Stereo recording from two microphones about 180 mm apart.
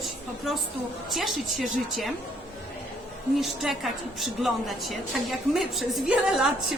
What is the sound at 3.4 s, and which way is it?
A woman's voice, centre (ahead or behind).